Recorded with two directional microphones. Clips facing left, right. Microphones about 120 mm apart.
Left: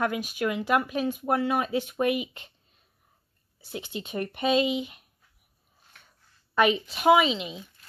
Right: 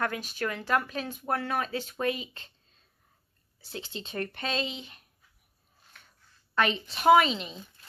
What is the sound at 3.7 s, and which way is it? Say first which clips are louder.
Speech: left 4 dB; 15° left (ahead or behind).